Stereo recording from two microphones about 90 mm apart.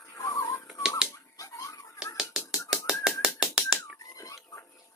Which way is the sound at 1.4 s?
40° left (ahead or behind).